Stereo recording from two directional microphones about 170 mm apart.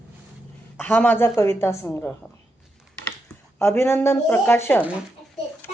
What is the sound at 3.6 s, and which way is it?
A woman's voice, 15° left (ahead or behind).